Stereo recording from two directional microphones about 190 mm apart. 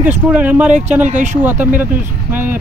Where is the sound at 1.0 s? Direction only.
40° right (ahead or behind).